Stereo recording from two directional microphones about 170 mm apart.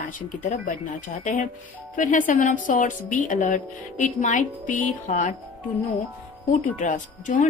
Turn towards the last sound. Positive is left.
turn(degrees=45)  # may be behind; listen again after turning